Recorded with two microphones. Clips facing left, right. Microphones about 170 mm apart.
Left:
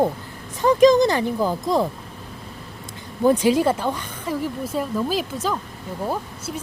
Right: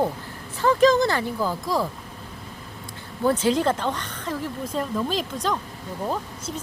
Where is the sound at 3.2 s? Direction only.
15° left (ahead or behind).